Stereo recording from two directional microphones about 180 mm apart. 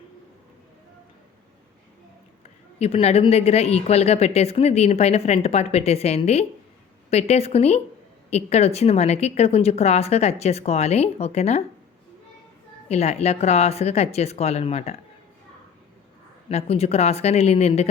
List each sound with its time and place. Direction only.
2.7 s a woman's voice: 35° left (ahead or behind)
12.9 s a woman's voice: 35° left (ahead or behind)
16.5 s a woman's voice: 35° left (ahead or behind)